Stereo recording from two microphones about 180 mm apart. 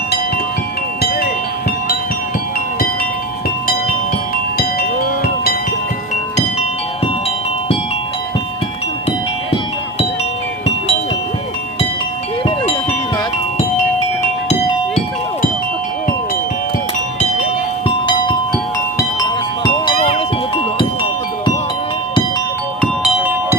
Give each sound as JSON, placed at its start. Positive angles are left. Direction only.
{"t": 4.5, "sound": "music", "side_deg": 60}
{"t": 17.8, "sound": "music", "side_deg": 25}
{"t": 19.6, "sound": "music", "side_deg": 25}
{"t": 22.8, "sound": "music", "side_deg": -5}